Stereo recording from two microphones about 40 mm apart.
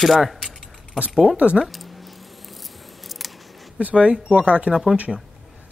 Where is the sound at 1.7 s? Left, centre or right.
Centre.